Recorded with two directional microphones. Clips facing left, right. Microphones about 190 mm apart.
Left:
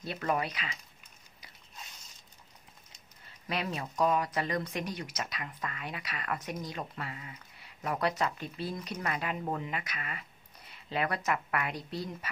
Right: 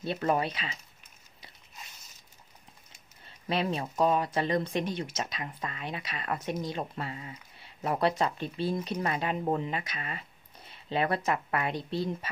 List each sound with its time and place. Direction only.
0.0 s a woman's voice: 25° right (ahead or behind)
3.3 s a woman's voice: 30° right (ahead or behind)